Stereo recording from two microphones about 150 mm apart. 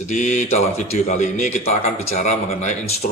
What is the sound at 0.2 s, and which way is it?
A man's voice, 50° left (ahead or behind).